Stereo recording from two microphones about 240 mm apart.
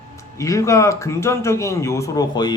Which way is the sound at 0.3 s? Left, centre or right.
Centre.